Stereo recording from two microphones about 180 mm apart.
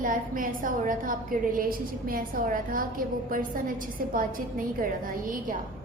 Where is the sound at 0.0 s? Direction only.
50° right (ahead or behind).